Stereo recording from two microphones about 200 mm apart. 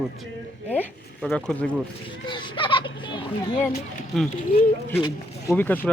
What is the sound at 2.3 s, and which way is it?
A child's voice, 25° left (ahead or behind).